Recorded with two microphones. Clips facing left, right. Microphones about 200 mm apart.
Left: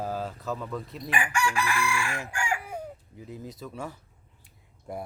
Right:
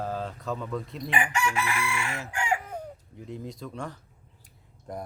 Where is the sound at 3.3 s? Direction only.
5° left (ahead or behind).